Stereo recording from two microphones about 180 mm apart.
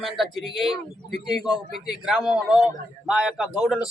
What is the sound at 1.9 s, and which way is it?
Speech, centre (ahead or behind).